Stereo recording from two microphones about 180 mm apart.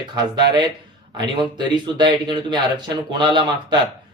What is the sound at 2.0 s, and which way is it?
Speech, 25° right (ahead or behind).